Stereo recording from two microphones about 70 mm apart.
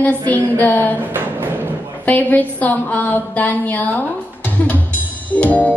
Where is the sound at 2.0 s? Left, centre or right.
Left.